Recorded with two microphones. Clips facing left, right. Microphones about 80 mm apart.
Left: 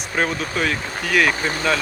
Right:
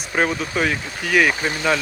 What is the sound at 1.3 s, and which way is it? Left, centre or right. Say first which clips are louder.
Speech: even; left.